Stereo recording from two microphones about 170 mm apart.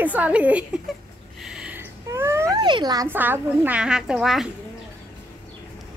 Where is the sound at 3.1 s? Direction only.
10° right (ahead or behind).